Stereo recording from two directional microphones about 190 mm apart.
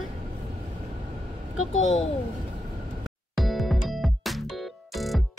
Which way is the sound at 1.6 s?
90° left.